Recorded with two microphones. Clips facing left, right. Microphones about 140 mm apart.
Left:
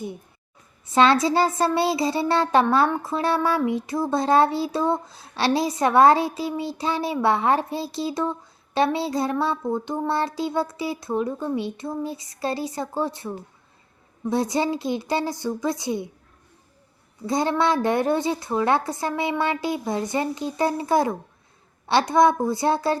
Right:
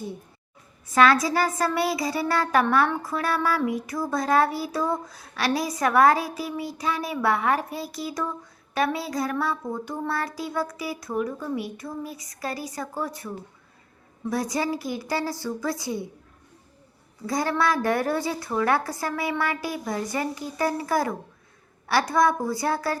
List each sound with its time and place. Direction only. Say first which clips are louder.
0.9 s speech: left 2 dB; 25° left (ahead or behind)
17.2 s speech: left 3 dB; 25° left (ahead or behind)